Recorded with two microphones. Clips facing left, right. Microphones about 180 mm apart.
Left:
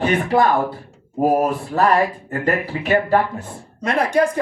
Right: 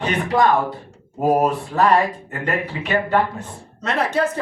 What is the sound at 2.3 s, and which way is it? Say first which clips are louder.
Speech: left 3 dB; 35° left (ahead or behind).